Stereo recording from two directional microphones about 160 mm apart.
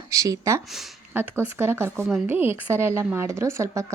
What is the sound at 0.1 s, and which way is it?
Speech, 20° right (ahead or behind).